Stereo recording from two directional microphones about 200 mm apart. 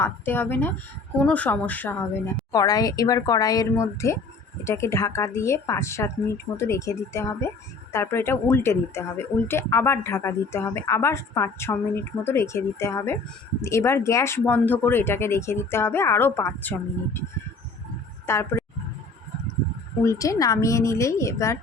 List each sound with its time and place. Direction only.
0.0 s speech: 10° left (ahead or behind)
18.3 s speech: 15° left (ahead or behind)
20.1 s speech: 15° left (ahead or behind)